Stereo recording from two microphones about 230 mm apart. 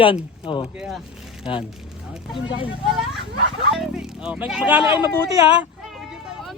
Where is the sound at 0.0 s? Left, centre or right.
Left.